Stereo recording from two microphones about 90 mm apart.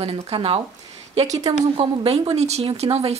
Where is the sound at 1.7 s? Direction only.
90° right.